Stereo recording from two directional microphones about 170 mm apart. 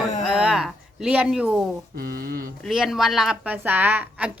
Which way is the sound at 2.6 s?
Centre (ahead or behind).